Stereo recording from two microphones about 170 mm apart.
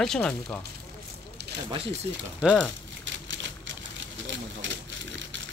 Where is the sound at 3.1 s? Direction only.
90° right.